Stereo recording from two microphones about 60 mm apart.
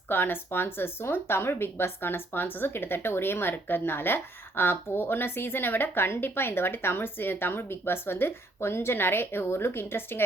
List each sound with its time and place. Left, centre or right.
0.1 s speech: left